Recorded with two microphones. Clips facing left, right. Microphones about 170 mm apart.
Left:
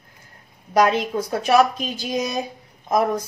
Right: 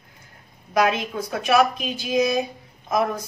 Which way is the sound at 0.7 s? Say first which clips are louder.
Left 3 dB; 35° left (ahead or behind).